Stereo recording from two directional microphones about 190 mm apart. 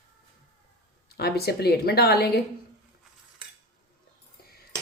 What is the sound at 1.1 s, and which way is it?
A woman's voice, 55° left (ahead or behind).